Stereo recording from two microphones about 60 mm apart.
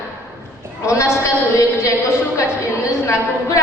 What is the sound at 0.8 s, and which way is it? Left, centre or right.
A woman's voice, left.